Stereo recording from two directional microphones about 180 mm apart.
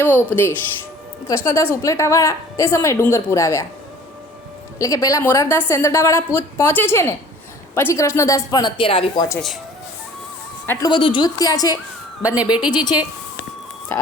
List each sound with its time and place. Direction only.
0.0 s a woman's voice: 10° left (ahead or behind)
4.8 s a woman's voice: 20° left (ahead or behind)
10.7 s speech: 20° left (ahead or behind)